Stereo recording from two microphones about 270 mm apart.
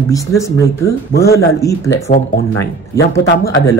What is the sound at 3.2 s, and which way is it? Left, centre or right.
Speech, left.